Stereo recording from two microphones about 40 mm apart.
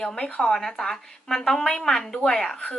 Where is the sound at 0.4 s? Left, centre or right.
Centre.